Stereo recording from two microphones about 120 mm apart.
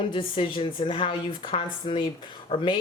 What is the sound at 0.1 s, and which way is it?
A woman's voice, 45° left (ahead or behind).